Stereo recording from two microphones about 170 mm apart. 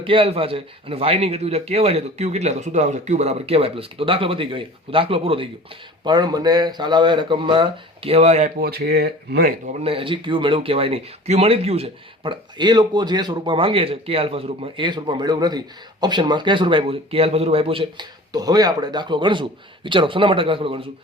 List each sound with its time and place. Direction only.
0.0 s a man's voice: 30° right (ahead or behind); by 9.5 s 65° right (ahead or behind)
9.8 s speech: 30° right (ahead or behind)